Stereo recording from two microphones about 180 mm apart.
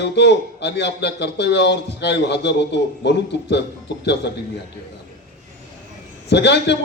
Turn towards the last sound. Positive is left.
turn(degrees=75)  # may be behind; listen again after turning